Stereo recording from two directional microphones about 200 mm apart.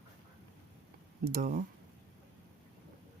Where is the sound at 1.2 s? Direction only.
45° right (ahead or behind).